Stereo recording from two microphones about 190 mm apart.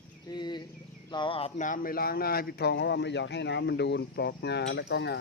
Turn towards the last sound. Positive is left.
turn(degrees=60)  # may be behind; listen again after turning